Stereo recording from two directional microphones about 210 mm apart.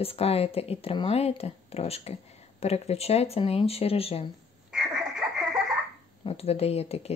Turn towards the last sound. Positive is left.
turn(degrees=30)  # may be behind; listen again after turning